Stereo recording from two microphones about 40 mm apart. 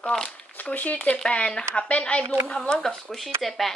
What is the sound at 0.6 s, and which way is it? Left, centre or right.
Speech, left.